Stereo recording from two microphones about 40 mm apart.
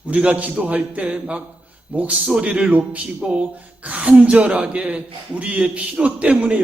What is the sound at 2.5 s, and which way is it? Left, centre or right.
Speech, right.